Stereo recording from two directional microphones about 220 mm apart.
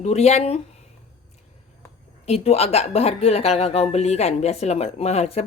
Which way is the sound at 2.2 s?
30° left (ahead or behind).